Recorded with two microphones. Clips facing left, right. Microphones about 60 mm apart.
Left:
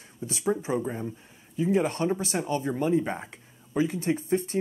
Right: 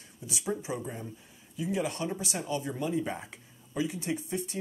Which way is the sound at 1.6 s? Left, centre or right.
Left.